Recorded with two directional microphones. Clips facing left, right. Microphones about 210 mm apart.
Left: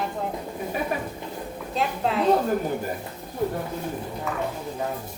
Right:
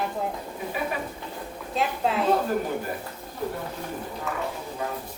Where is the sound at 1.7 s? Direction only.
Centre (ahead or behind).